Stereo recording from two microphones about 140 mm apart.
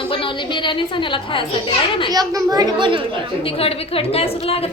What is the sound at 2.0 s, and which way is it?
Speech, 25° right (ahead or behind).